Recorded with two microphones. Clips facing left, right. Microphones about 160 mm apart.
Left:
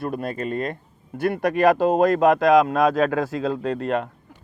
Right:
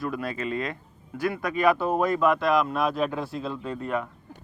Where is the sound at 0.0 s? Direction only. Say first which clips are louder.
Left 3 dB; 50° left (ahead or behind); by 4.1 s 80° left.